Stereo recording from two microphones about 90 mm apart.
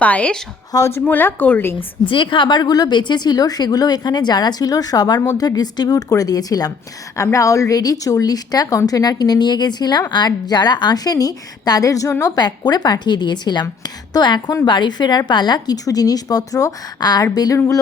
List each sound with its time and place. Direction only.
0.0 s a woman's voice: 15° left (ahead or behind)
0.7 s a woman's voice: 30° left (ahead or behind)
1.0 s speech: 20° left (ahead or behind)
2.0 s a woman's voice: 70° left (ahead or behind); by 17.6 s 45° left (ahead or behind)